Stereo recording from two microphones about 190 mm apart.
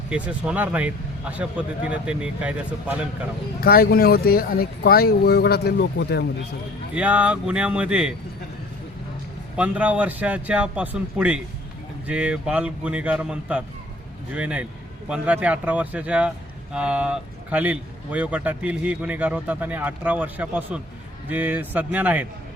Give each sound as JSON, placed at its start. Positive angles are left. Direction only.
{"t": 0.1, "sound": "speech", "side_deg": -5}
{"t": 3.6, "sound": "speech", "side_deg": 50}
{"t": 6.9, "sound": "speech", "side_deg": -10}
{"t": 9.6, "sound": "speech", "side_deg": -5}